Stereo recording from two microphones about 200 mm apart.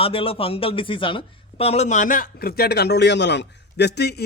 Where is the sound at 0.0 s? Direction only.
25° left (ahead or behind).